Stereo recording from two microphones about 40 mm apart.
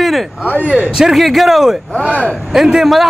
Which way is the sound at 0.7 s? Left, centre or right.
Right.